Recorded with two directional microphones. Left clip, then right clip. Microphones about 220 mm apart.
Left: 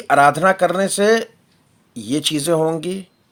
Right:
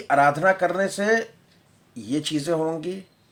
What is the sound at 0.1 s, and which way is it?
Speech, 45° left (ahead or behind).